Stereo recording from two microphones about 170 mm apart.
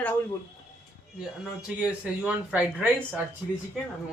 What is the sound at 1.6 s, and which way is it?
Speech, 5° right (ahead or behind).